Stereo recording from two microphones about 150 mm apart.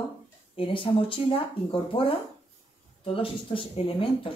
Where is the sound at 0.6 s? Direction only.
35° left (ahead or behind).